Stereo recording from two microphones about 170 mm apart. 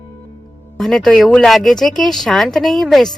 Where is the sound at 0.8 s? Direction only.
Centre (ahead or behind).